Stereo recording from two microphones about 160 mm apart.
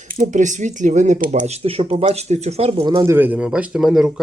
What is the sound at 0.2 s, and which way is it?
Speech, 50° right (ahead or behind).